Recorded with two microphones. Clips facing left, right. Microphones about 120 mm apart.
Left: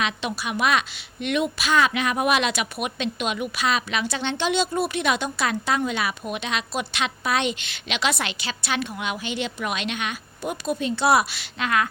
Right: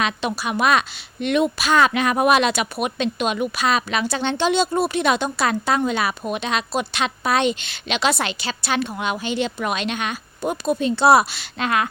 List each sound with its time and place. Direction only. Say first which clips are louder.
0.0 s a woman's voice: right 4 dB; 40° right (ahead or behind)